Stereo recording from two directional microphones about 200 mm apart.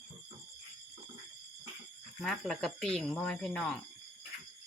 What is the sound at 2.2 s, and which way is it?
Speech, centre (ahead or behind).